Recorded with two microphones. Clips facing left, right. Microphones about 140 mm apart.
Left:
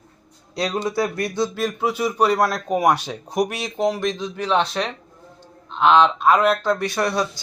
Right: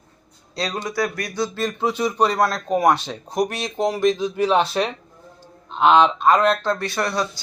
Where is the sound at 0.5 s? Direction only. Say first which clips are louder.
Left 3 dB; 20° left (ahead or behind).